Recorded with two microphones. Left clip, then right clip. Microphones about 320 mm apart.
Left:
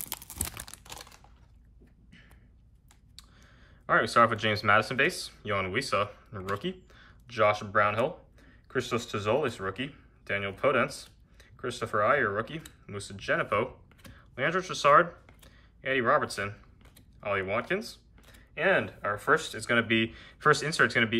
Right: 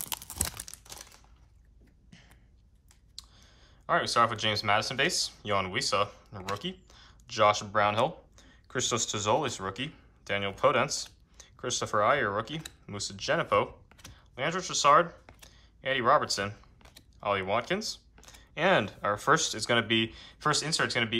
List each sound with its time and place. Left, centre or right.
0.0 s tearing: centre
3.2 s speech: centre